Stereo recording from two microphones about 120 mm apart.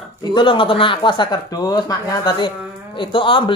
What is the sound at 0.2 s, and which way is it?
Speech, 40° left (ahead or behind).